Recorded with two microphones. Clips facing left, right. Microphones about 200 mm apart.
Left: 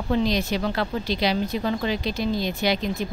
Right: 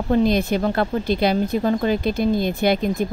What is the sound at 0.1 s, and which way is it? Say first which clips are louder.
A woman's voice: right 5 dB; 50° right (ahead or behind).